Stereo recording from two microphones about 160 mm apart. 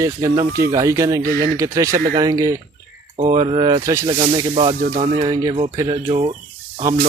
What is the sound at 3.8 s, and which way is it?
Speech, 20° right (ahead or behind).